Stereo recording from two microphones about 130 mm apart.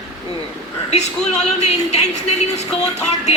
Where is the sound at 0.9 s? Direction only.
60° left (ahead or behind).